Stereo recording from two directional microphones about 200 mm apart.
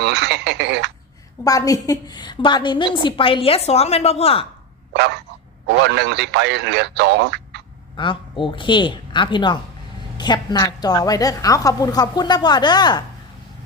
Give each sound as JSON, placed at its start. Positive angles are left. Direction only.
{"t": 0.0, "sound": "speech", "side_deg": -60}
{"t": 1.5, "sound": "a woman's voice", "side_deg": 15}
{"t": 4.9, "sound": "speech", "side_deg": -60}
{"t": 7.9, "sound": "a woman's voice", "side_deg": 25}